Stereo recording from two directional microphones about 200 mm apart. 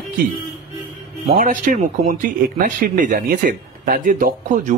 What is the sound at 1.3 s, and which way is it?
Speech, 40° right (ahead or behind).